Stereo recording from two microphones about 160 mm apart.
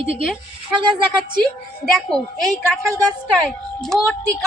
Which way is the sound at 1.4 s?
Centre (ahead or behind).